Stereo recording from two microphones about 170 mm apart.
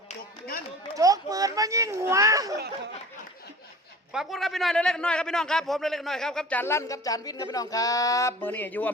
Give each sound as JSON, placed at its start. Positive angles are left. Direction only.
{"t": 0.9, "sound": "speech", "side_deg": -20}
{"t": 4.1, "sound": "a man's voice", "side_deg": 0}